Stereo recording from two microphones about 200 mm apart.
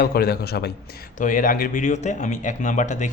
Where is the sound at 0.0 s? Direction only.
50° left (ahead or behind).